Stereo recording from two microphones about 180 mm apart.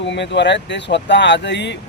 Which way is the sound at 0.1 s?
75° left (ahead or behind).